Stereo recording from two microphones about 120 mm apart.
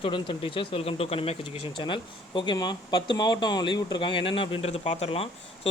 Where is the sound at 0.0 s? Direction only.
50° left (ahead or behind).